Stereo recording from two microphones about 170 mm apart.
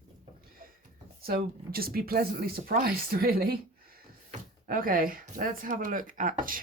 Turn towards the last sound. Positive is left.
turn(degrees=-55)  # may be behind; listen again after turning